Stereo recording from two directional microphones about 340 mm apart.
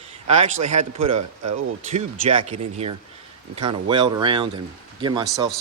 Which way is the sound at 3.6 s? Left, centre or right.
Centre.